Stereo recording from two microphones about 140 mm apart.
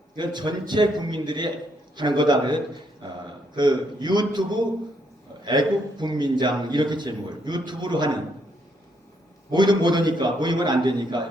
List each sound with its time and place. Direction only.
0.2 s speech: 30° right (ahead or behind)
9.5 s speech: 30° right (ahead or behind)